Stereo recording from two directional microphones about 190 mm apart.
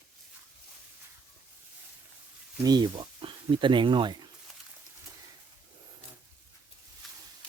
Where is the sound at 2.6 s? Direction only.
20° right (ahead or behind).